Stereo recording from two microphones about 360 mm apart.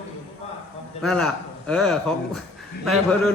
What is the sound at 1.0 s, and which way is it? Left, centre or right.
A man's voice, centre.